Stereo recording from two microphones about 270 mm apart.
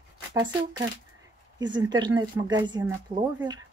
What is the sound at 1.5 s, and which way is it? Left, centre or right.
Speech, centre.